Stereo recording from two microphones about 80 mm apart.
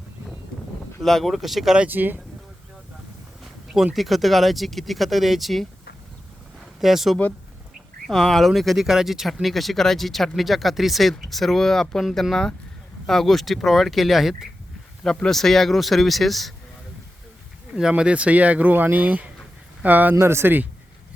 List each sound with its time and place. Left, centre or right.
1.0 s speech: centre
1.9 s speech: right
3.9 s speech: centre
6.7 s speech: centre
17.7 s speech: centre
20.1 s speech: right